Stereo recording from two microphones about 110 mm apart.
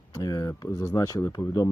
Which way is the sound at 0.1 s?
35° left (ahead or behind).